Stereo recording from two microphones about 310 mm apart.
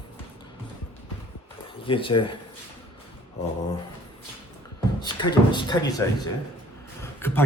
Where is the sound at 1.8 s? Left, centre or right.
Centre.